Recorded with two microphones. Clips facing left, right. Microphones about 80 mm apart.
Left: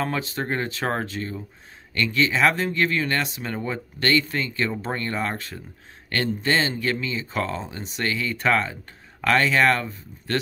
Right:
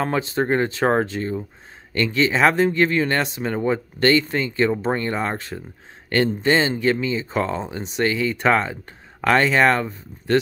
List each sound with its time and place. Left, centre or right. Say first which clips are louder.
0.0 s speech: right 5 dB; right